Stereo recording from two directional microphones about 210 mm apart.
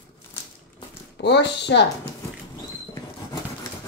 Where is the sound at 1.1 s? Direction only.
55° left (ahead or behind).